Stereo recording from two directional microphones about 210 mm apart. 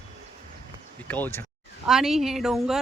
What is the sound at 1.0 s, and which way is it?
Speech, 10° left (ahead or behind).